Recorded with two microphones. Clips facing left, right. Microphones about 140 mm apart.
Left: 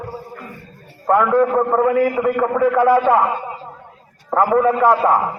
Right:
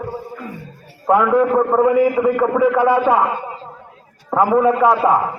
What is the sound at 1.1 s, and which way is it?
A man's voice, 10° right (ahead or behind).